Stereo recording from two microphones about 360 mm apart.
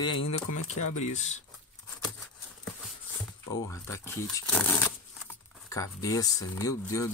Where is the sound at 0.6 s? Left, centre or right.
Left.